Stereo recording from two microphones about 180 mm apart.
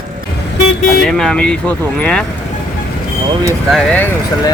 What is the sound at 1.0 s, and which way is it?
A man's voice, 5° left (ahead or behind).